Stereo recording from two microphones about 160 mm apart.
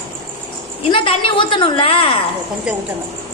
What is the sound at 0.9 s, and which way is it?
A woman's voice, 35° left (ahead or behind).